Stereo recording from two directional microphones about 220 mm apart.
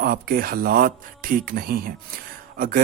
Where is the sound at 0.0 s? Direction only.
45° right (ahead or behind).